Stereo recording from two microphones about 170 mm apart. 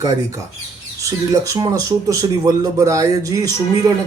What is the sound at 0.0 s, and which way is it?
A man's voice, 20° right (ahead or behind).